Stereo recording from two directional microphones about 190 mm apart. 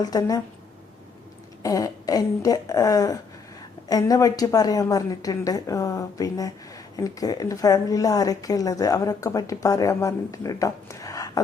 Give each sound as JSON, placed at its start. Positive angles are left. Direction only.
{"t": 0.0, "sound": "a woman's voice", "side_deg": 20}
{"t": 1.6, "sound": "a woman's voice", "side_deg": 20}